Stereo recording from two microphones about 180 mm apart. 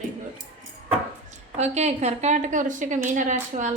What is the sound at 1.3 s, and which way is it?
A woman's voice, 40° right (ahead or behind).